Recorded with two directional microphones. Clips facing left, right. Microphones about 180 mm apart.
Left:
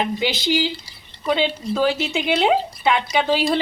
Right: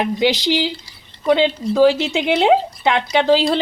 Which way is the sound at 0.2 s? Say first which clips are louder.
Right 4 dB; 20° right (ahead or behind).